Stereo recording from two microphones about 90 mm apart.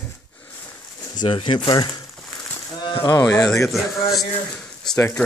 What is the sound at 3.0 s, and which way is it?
Speech, 45° left (ahead or behind).